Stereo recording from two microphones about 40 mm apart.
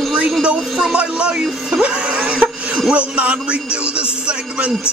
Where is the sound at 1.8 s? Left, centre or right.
Right.